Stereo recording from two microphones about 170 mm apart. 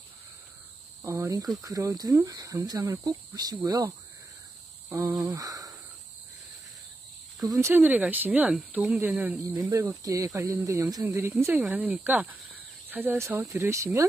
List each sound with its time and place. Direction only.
1.0 s speech: 20° right (ahead or behind)
4.8 s cricket: 20° right (ahead or behind)
7.3 s speech: 20° right (ahead or behind)